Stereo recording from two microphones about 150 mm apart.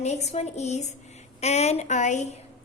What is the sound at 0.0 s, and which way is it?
A woman's voice, 45° left (ahead or behind).